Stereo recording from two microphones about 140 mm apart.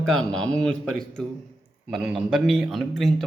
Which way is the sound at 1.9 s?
Centre (ahead or behind).